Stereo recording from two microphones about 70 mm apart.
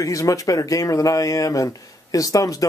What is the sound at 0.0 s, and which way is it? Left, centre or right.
Speech, left.